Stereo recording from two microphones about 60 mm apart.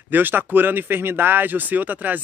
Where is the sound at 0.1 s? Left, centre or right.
Right.